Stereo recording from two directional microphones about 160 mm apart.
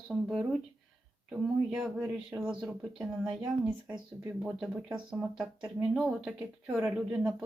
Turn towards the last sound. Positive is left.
turn(degrees=-10)  # may be behind; listen again after turning